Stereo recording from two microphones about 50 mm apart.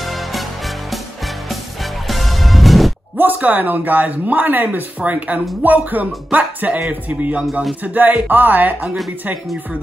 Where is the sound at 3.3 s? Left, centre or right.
Right.